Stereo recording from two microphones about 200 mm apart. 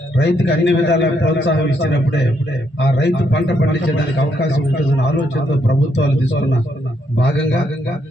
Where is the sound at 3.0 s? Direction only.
60° left (ahead or behind).